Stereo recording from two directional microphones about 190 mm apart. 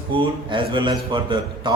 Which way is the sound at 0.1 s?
25° right (ahead or behind).